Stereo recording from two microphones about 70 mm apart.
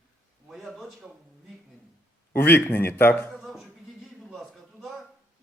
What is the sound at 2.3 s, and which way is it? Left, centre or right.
Speech, left.